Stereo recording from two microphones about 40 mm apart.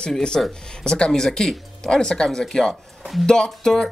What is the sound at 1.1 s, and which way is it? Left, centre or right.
Speech, centre.